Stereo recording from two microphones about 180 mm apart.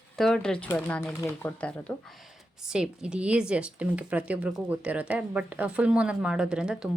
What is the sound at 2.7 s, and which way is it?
A woman's voice, 5° right (ahead or behind).